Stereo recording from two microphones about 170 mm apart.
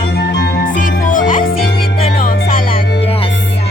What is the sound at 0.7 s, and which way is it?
Music, 50° left (ahead or behind).